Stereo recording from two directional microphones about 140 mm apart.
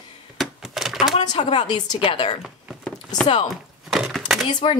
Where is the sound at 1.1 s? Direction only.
45° left (ahead or behind).